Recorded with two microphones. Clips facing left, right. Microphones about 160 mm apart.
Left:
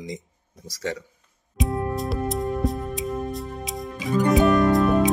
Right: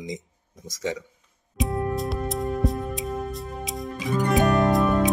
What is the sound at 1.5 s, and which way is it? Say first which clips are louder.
Music: even; centre (ahead or behind).